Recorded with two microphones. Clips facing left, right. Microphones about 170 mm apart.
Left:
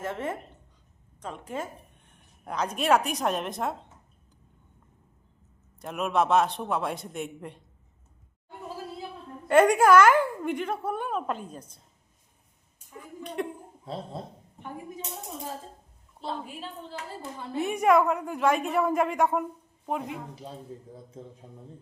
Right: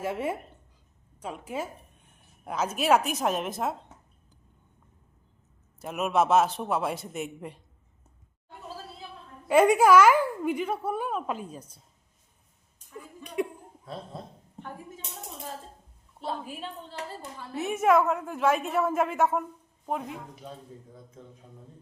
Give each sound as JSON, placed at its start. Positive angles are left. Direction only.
{"t": 0.0, "sound": "a woman's voice", "side_deg": -10}
{"t": 5.8, "sound": "a woman's voice", "side_deg": -5}
{"t": 9.5, "sound": "a woman's voice", "side_deg": -5}
{"t": 13.2, "sound": "speech", "side_deg": -10}
{"t": 13.8, "sound": "speech", "side_deg": 25}
{"t": 16.2, "sound": "a woman's voice", "side_deg": -5}
{"t": 20.4, "sound": "a man's voice", "side_deg": 30}